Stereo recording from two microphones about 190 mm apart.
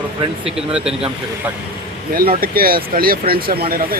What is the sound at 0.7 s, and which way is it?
Speech, 5° right (ahead or behind).